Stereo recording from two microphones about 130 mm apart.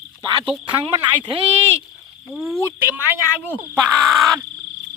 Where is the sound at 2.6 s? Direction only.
20° right (ahead or behind).